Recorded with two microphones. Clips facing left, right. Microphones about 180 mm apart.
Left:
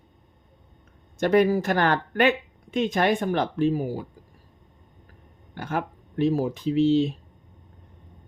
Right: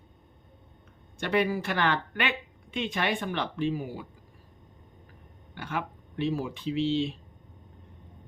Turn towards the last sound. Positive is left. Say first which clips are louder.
# left 7 dB
turn(degrees=40)  # may be behind; listen again after turning